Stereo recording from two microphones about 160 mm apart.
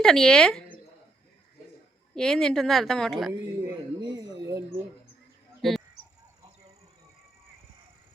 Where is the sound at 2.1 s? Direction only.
5° left (ahead or behind).